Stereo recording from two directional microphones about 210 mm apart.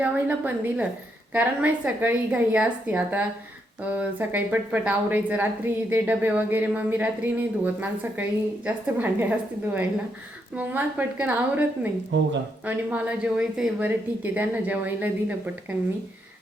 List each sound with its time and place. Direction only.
0.0 s a woman's voice: 10° right (ahead or behind)
10.5 s a woman's voice: 10° right (ahead or behind)
12.1 s speech: 55° right (ahead or behind)
12.6 s a woman's voice: 5° right (ahead or behind)